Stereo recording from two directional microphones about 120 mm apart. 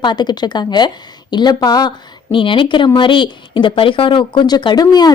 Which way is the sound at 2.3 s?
45° left (ahead or behind).